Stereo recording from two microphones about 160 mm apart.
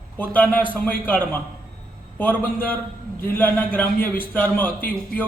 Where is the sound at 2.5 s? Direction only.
65° left (ahead or behind).